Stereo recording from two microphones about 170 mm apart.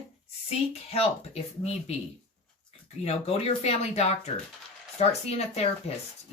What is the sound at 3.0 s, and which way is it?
Speech, 35° left (ahead or behind).